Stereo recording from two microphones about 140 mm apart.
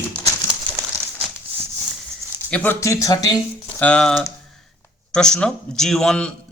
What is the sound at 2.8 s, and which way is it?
Speech, 20° left (ahead or behind).